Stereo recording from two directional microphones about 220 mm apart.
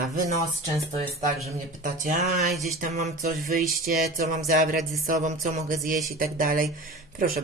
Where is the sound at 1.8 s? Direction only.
35° right (ahead or behind).